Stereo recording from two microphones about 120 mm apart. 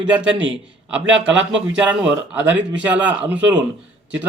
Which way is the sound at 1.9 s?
15° right (ahead or behind).